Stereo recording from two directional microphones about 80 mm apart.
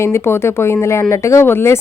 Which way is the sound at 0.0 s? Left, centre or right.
Left.